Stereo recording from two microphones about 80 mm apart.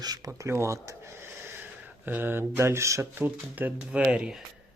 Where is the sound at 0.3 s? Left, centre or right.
Right.